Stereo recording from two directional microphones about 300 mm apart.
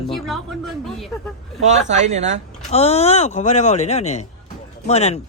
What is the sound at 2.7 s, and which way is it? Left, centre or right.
Speech, left.